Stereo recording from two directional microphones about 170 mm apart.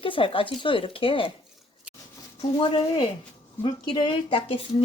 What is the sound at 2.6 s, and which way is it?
Speech, 30° left (ahead or behind).